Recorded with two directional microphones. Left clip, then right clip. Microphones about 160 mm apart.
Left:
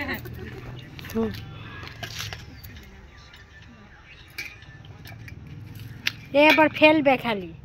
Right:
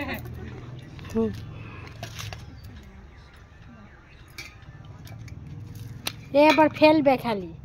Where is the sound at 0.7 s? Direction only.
35° left (ahead or behind).